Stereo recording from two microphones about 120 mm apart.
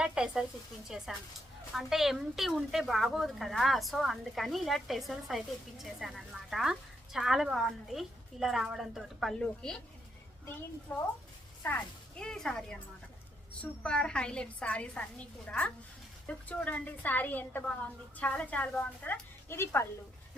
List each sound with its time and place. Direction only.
0.0 s a sound: 5° right (ahead or behind)
0.9 s a woman's voice: 5° right (ahead or behind)
10.9 s a woman's voice: 15° left (ahead or behind)
12.2 s a woman's voice: 5° left (ahead or behind); by 19.9 s 20° left (ahead or behind)